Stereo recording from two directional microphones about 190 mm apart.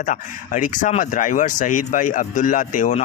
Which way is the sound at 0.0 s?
45° left (ahead or behind).